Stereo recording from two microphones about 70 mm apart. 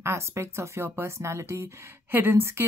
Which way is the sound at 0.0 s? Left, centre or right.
Right.